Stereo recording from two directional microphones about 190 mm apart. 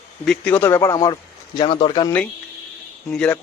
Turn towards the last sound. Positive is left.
turn(degrees=5)  # may be behind; listen again after turning